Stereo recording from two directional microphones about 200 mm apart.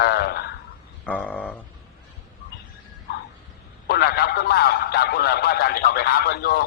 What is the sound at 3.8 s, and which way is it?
A man's voice, 55° left (ahead or behind).